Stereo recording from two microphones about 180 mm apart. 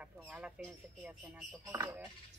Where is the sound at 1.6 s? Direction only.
15° right (ahead or behind).